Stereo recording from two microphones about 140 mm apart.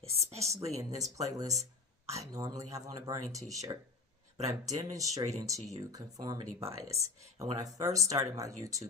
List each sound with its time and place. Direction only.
0.5 s speech: 25° right (ahead or behind)